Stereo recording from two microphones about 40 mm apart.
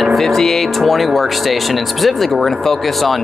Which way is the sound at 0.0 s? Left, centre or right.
Centre.